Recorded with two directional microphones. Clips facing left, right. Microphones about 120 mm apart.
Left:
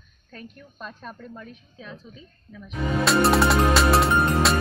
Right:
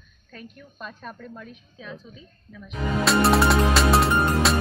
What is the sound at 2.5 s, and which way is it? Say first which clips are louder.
Speech: left 1 dB; centre (ahead or behind).